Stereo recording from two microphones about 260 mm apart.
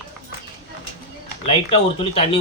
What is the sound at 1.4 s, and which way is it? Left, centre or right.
Speech, left.